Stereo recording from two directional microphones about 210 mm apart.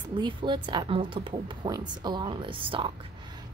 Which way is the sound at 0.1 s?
20° right (ahead or behind).